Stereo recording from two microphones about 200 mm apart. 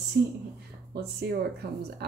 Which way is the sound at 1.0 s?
55° right (ahead or behind).